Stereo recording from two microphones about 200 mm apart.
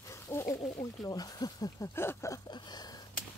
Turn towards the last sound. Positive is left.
turn(degrees=20)  # may be behind; listen again after turning